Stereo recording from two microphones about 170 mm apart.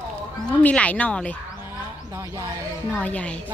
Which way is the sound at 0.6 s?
10° left (ahead or behind).